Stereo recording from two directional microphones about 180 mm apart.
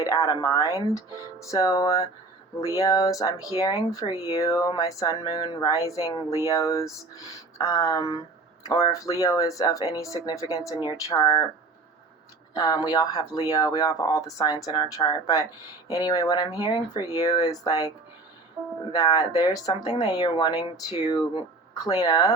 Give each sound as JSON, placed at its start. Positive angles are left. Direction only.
{"t": 0.0, "sound": "speech", "side_deg": 20}
{"t": 0.9, "sound": "music", "side_deg": 15}
{"t": 2.7, "sound": "speech", "side_deg": 20}
{"t": 6.5, "sound": "music", "side_deg": 15}
{"t": 7.6, "sound": "speech", "side_deg": 20}
{"t": 10.7, "sound": "music", "side_deg": 20}
{"t": 12.5, "sound": "speech", "side_deg": 20}